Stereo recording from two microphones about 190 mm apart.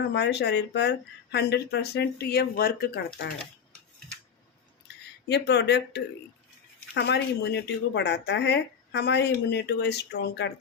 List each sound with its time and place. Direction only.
0.1 s speech: 60° left (ahead or behind)
3.2 s speech: 65° left (ahead or behind)
5.3 s speech: 65° left (ahead or behind)